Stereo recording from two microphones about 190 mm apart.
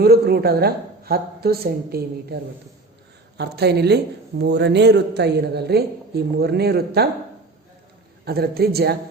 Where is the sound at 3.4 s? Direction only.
60° right (ahead or behind).